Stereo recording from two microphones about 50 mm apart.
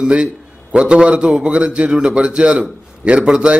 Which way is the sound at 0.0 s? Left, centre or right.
Centre.